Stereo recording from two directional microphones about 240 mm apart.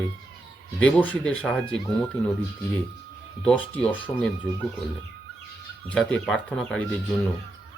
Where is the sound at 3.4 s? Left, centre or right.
Centre.